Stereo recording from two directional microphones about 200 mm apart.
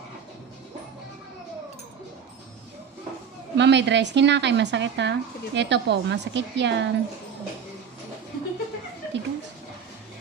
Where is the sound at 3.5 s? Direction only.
60° right (ahead or behind).